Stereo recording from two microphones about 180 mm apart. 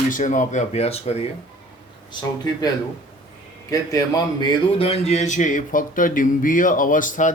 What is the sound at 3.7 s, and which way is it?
A man's voice, 20° left (ahead or behind).